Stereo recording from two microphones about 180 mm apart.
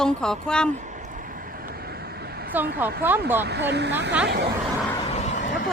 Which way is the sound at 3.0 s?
10° right (ahead or behind).